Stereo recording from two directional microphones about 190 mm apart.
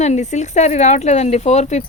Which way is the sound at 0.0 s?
35° left (ahead or behind).